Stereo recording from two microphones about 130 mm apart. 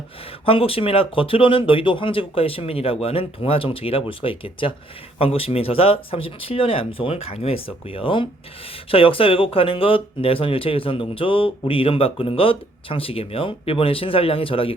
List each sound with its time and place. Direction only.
0.4 s speech: 45° left (ahead or behind)